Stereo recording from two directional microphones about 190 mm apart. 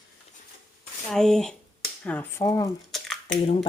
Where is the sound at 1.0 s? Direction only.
Centre (ahead or behind).